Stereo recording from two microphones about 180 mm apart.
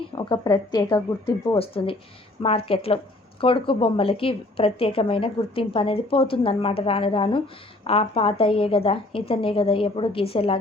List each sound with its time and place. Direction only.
0.2 s a woman's voice: 25° left (ahead or behind)